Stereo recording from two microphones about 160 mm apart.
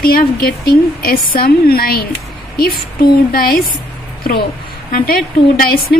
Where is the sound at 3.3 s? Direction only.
70° left (ahead or behind).